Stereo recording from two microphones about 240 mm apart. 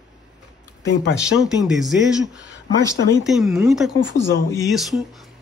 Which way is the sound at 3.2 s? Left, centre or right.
Centre.